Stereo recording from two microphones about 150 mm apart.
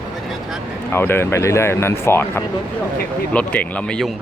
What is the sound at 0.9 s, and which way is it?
Speech, 15° left (ahead or behind).